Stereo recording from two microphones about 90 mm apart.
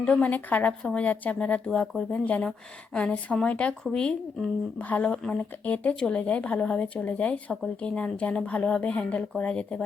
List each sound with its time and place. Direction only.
0.0 s speech: 15° left (ahead or behind)